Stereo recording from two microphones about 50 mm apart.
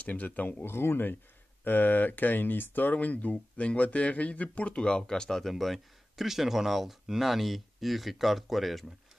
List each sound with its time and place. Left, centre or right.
0.0 s speech: left
0.5 s speech: left; by 8.8 s centre